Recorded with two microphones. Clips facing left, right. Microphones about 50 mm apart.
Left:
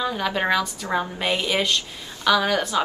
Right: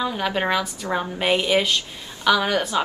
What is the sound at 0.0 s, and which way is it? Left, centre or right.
A woman's voice, centre.